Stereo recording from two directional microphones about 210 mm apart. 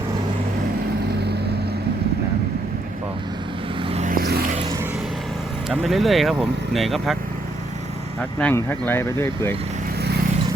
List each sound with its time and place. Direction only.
3.8 s vehicle: 35° right (ahead or behind)
5.6 s speech: centre (ahead or behind)
8.2 s speech: 5° left (ahead or behind)